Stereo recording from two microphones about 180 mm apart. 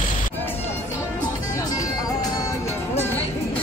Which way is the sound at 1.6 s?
20° left (ahead or behind).